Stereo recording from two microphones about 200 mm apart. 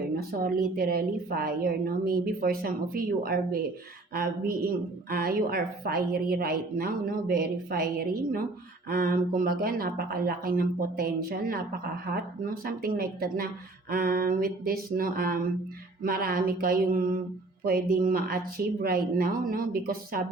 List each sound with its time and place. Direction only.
0.2 s a woman's voice: 45° right (ahead or behind)